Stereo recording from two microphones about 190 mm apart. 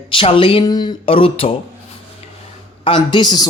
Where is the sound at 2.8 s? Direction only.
25° left (ahead or behind).